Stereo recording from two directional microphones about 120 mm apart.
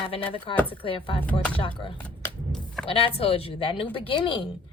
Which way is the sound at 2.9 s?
50° left (ahead or behind).